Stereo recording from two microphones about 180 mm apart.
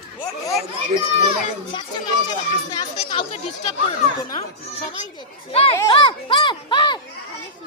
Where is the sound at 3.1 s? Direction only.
35° left (ahead or behind).